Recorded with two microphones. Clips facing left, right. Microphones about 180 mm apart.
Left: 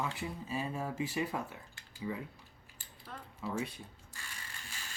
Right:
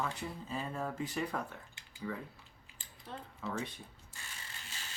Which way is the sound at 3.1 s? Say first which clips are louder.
Right 2 dB; 25° right (ahead or behind).